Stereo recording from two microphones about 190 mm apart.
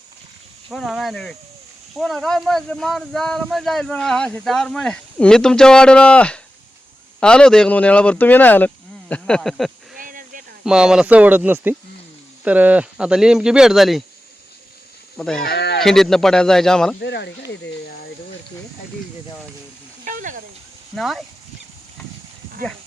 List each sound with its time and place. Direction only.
0.7 s speech: centre (ahead or behind)
10.0 s a sound: 45° right (ahead or behind)
10.6 s speech: 5° right (ahead or behind)
15.2 s speech: 5° left (ahead or behind)
15.4 s speech: 60° left (ahead or behind)
15.8 s speech: centre (ahead or behind)
17.0 s speech: 65° left (ahead or behind)
20.1 s snake: 45° right (ahead or behind)
20.9 s speech: centre (ahead or behind)